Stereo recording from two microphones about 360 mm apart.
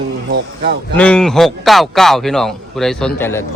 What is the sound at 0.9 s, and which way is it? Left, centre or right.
A man's voice, centre.